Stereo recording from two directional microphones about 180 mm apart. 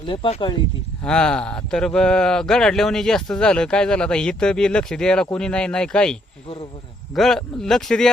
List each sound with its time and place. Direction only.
0.0 s speech: 30° left (ahead or behind)
1.0 s speech: 5° left (ahead or behind)
7.2 s speech: centre (ahead or behind)